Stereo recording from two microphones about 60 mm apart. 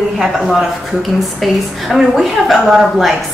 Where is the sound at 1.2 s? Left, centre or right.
Centre.